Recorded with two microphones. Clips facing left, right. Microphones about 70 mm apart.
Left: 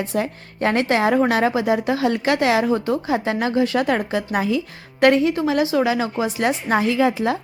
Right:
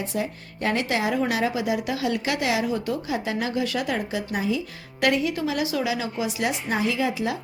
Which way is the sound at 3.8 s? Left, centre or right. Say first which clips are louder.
Left 6 dB; left.